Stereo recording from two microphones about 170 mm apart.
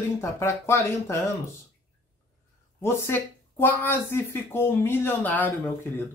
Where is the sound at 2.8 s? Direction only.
15° left (ahead or behind).